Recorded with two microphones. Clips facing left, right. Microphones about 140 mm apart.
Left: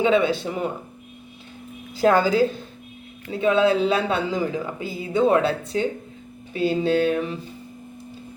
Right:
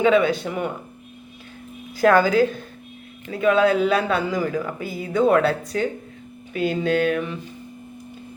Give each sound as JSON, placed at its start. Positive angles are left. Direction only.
{"t": 0.0, "sound": "speech", "side_deg": 30}
{"t": 2.0, "sound": "speech", "side_deg": 30}
{"t": 6.5, "sound": "a sound", "side_deg": 30}